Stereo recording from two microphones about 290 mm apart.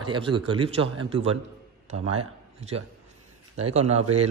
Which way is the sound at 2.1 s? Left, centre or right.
Right.